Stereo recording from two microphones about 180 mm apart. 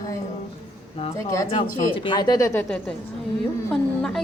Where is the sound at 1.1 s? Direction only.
20° left (ahead or behind).